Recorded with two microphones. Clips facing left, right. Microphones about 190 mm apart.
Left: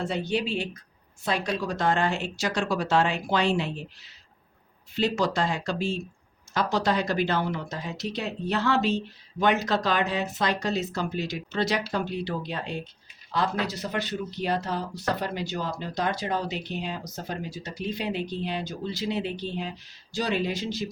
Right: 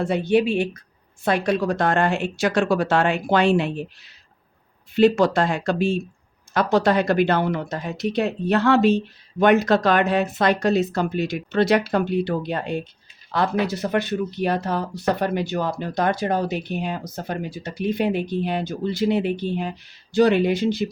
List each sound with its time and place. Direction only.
0.0 s speech: 55° right (ahead or behind)